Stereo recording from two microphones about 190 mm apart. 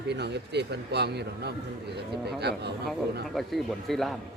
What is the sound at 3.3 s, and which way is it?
Speech, centre (ahead or behind).